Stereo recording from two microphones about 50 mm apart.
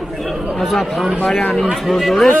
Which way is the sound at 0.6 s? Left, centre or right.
Centre.